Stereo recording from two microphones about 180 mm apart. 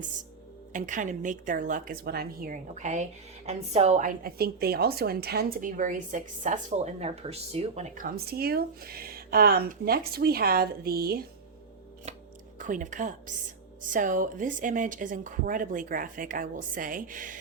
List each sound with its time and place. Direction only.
0.7 s a woman's voice: 45° right (ahead or behind)
12.5 s a woman's voice: 45° right (ahead or behind)